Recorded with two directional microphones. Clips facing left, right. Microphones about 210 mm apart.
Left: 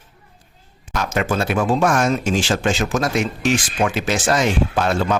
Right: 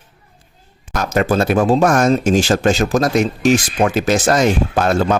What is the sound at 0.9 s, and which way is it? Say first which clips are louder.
Speech: right 5 dB; 40° right (ahead or behind).